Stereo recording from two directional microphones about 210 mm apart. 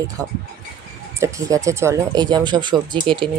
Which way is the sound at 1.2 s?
15° right (ahead or behind).